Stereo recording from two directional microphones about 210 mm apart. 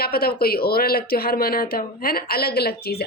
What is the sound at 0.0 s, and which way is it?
Speech, 45° left (ahead or behind).